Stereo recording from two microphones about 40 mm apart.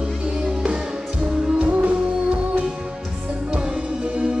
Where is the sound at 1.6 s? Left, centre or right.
Right.